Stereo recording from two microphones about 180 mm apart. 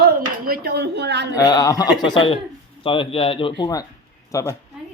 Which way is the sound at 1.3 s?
20° left (ahead or behind).